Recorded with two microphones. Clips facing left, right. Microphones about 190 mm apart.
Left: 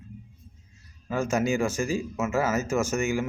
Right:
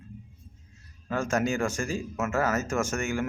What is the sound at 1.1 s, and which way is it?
Speech, 10° left (ahead or behind).